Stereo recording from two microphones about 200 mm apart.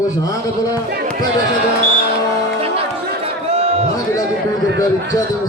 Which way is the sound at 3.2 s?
30° right (ahead or behind).